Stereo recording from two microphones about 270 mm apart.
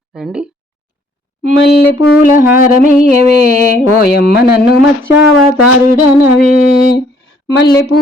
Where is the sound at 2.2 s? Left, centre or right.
Left.